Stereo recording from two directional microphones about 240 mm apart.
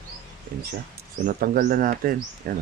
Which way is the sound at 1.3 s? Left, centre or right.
Right.